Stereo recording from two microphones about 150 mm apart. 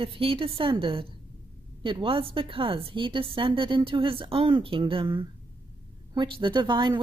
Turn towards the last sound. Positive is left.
turn(degrees=-30)  # may be behind; listen again after turning